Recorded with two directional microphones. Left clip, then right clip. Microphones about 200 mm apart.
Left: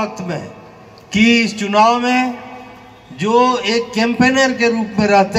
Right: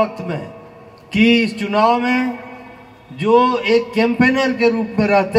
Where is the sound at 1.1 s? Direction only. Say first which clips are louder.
Left 1 dB; 45° right (ahead or behind).